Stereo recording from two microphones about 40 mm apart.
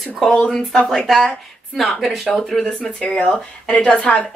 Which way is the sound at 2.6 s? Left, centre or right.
Centre.